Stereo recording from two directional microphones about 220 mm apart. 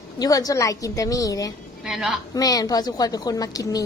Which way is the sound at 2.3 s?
15° left (ahead or behind).